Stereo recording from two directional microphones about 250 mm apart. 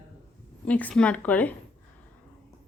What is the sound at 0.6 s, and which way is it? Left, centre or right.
Speech, centre.